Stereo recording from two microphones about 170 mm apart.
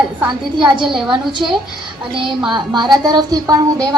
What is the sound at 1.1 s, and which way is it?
Speech, 25° right (ahead or behind).